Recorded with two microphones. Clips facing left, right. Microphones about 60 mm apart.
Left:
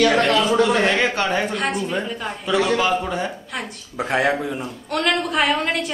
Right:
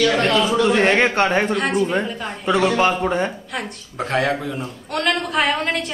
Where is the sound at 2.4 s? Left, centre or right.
Right.